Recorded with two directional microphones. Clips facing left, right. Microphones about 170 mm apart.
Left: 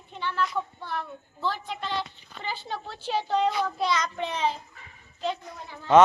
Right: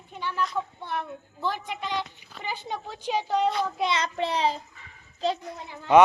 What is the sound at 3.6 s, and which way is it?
Child singing, 20° right (ahead or behind).